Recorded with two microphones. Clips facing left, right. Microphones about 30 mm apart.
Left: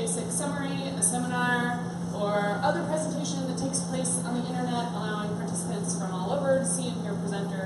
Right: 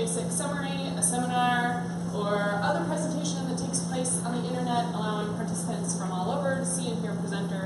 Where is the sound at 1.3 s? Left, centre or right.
Centre.